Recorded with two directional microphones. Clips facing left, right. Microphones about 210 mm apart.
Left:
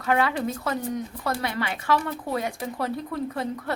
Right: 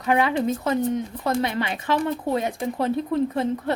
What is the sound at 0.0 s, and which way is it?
Speech, 20° right (ahead or behind).